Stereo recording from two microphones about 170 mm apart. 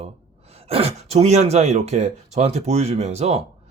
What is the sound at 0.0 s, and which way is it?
Speech, 35° right (ahead or behind).